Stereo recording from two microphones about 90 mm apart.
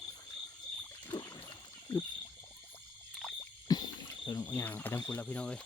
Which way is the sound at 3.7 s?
45° left (ahead or behind).